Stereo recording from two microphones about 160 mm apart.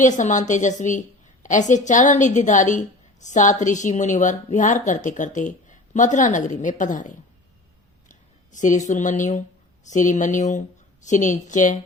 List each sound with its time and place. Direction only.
0.0 s a woman's voice: 50° left (ahead or behind)
8.5 s a woman's voice: 50° left (ahead or behind)